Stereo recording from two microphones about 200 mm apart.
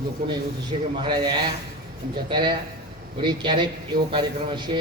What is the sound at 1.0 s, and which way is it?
A man's voice, 25° right (ahead or behind).